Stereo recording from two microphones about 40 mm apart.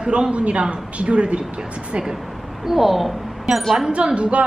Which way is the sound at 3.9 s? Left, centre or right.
Right.